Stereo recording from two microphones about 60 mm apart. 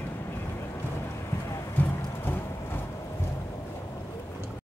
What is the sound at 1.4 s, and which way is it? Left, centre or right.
Music, left.